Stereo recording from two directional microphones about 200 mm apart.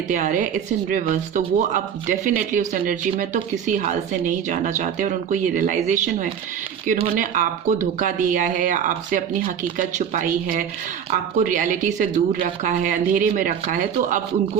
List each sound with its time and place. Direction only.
0.1 s speech: 40° right (ahead or behind)